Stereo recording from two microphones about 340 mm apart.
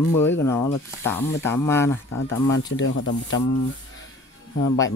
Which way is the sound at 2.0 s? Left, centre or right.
Left.